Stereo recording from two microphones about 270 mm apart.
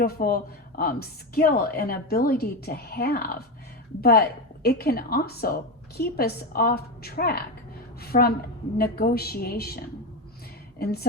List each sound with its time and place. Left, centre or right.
0.0 s a woman's voice: left